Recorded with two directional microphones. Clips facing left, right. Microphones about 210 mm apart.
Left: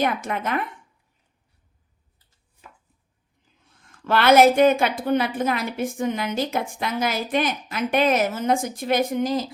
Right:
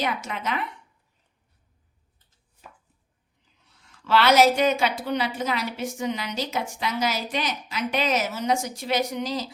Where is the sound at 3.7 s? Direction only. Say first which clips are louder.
Even; 50° left (ahead or behind).